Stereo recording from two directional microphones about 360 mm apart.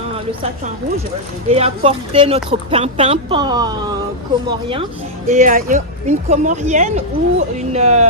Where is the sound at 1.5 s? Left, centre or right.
Centre.